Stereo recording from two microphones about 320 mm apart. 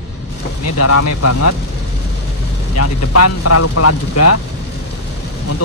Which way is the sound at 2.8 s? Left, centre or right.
Left.